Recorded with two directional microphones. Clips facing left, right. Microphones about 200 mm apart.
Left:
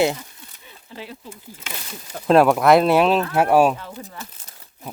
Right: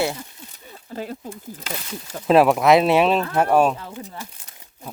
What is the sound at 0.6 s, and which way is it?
Speech, 45° right (ahead or behind).